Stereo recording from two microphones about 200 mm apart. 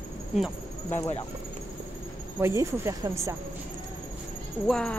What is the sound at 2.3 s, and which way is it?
Speech, 15° right (ahead or behind).